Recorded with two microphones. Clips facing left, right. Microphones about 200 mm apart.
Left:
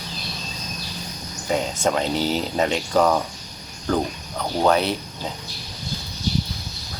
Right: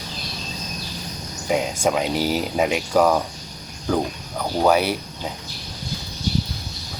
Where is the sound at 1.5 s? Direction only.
10° right (ahead or behind).